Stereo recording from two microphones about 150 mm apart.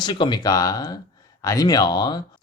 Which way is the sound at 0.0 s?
30° left (ahead or behind).